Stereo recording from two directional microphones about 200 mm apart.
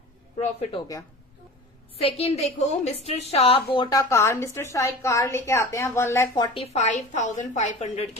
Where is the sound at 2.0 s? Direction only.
30° left (ahead or behind).